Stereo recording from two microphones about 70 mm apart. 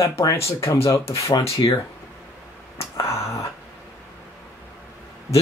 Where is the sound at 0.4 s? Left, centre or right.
Left.